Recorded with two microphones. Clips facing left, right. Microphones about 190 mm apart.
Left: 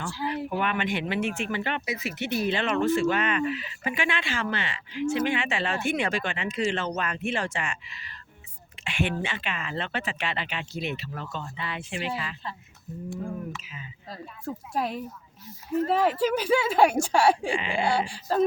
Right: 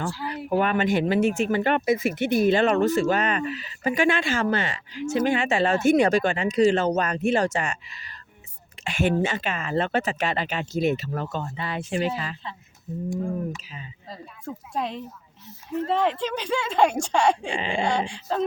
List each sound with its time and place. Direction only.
0.5 s speech: 40° right (ahead or behind)
13.6 s speech: 35° right (ahead or behind)
14.1 s speech: 5° left (ahead or behind)